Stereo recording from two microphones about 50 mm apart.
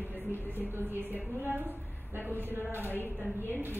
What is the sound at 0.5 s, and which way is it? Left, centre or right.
A woman's voice, right.